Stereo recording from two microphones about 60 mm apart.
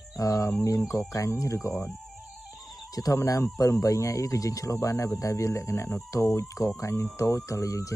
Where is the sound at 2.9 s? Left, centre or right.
Left.